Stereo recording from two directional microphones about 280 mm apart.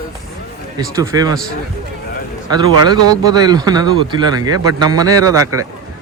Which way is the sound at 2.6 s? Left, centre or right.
Centre.